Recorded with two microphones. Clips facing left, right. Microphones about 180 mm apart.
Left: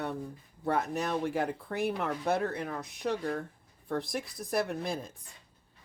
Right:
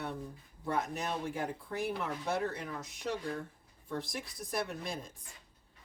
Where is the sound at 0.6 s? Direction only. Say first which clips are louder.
Left 4 dB; 65° left (ahead or behind).